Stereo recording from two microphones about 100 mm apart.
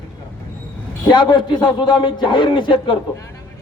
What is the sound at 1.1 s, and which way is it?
A man's voice, 55° left (ahead or behind).